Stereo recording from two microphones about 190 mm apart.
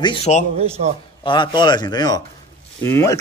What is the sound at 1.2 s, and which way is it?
Speech, 25° left (ahead or behind).